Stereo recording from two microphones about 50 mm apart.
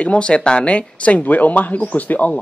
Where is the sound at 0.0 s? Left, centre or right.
Left.